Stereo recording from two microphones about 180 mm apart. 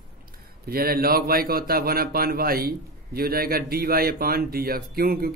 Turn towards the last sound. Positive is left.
turn(degrees=-55)  # may be behind; listen again after turning